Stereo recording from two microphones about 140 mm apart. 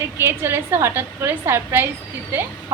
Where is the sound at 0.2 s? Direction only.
15° right (ahead or behind).